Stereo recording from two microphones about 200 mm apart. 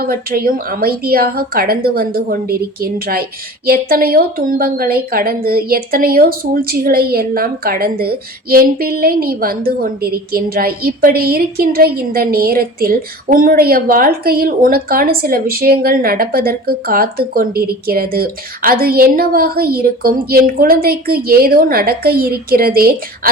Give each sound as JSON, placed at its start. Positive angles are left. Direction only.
{"t": 0.0, "sound": "a woman's voice", "side_deg": -50}